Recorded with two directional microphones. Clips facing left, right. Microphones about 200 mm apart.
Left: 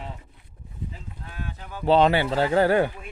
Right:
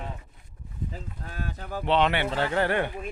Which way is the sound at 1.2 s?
40° right (ahead or behind).